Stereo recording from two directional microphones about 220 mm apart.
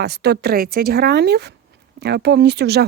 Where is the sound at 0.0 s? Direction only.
50° right (ahead or behind).